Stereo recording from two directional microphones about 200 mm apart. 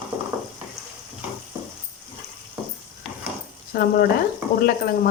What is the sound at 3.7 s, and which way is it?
Speech, 50° left (ahead or behind).